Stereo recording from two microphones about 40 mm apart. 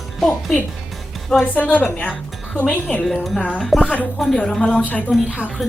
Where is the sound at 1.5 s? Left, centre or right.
Left.